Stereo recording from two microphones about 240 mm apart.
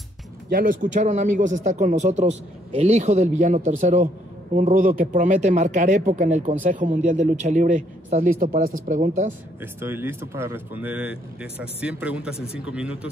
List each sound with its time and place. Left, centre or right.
0.5 s a man's voice: right
9.6 s speech: centre